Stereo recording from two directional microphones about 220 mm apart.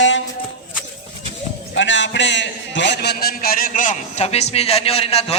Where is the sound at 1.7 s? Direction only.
55° left (ahead or behind); by 5.4 s 25° left (ahead or behind).